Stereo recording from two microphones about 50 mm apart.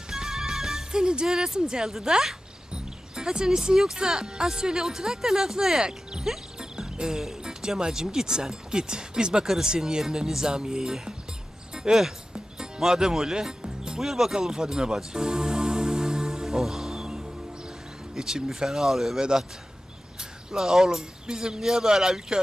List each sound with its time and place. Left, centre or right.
0.1 s music: centre
2.7 s speech: centre
12.3 s music: centre
18.1 s speech: centre
20.5 s speech: centre